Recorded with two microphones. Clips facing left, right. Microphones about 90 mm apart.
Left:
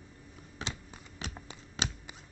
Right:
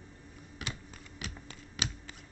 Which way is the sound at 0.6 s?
30° left (ahead or behind).